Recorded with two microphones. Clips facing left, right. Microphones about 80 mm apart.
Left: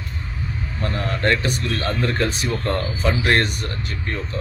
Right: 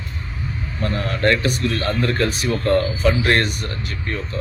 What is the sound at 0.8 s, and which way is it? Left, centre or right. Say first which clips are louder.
Speech: right 2 dB; left.